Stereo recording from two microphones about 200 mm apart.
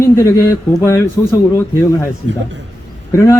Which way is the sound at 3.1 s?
15° left (ahead or behind).